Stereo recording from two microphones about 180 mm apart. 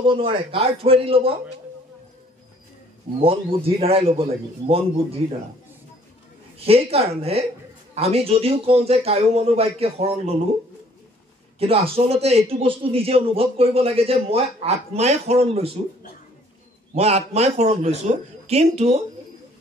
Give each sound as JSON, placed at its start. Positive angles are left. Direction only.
{"t": 0.0, "sound": "a man's voice", "side_deg": -30}
{"t": 3.3, "sound": "a man's voice", "side_deg": -30}
{"t": 6.6, "sound": "a man's voice", "side_deg": -35}
{"t": 11.6, "sound": "a man's voice", "side_deg": -30}
{"t": 16.9, "sound": "a man's voice", "side_deg": -35}